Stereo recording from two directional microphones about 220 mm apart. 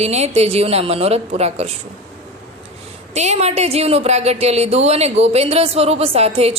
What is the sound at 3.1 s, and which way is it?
A woman's voice, 30° right (ahead or behind).